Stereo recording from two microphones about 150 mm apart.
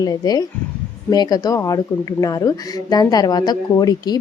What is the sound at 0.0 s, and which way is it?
Speech, 25° left (ahead or behind).